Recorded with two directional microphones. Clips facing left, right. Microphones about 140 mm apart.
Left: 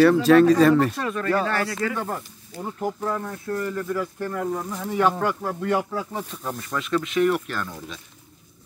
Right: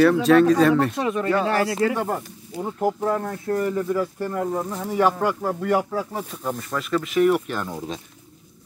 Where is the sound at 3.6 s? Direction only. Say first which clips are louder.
Right 4 dB; 10° right (ahead or behind).